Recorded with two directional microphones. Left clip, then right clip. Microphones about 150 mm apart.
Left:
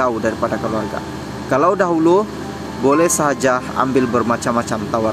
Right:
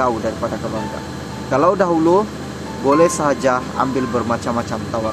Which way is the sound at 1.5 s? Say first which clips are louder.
Even; 30° left (ahead or behind).